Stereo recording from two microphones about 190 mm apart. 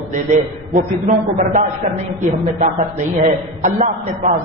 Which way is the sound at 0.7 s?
40° right (ahead or behind).